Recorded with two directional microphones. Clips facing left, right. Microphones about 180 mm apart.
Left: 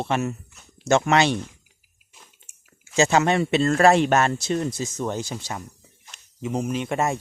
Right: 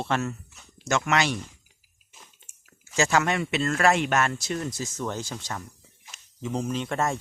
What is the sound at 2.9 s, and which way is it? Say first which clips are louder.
Speech: left 5 dB; 25° left (ahead or behind).